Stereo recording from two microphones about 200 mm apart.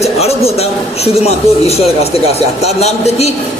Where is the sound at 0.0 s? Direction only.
30° left (ahead or behind).